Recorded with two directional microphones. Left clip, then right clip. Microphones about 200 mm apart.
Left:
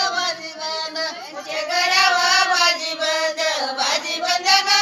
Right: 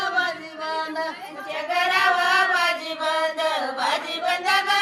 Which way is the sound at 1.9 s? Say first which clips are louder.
Left 3 dB; 60° right (ahead or behind).